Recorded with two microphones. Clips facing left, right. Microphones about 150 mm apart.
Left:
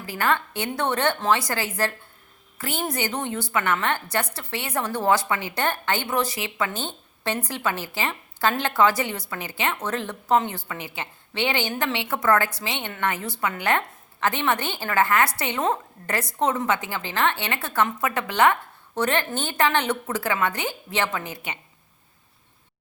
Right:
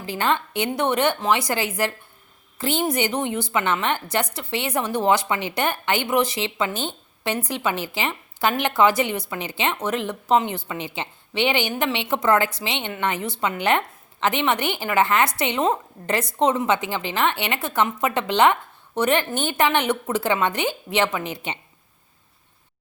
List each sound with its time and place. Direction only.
0.0 s a woman's voice: 25° right (ahead or behind)